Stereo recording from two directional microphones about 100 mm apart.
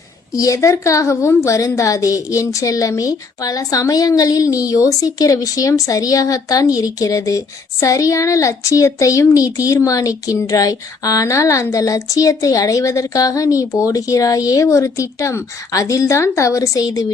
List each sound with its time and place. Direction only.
0.3 s a woman's voice: 35° left (ahead or behind)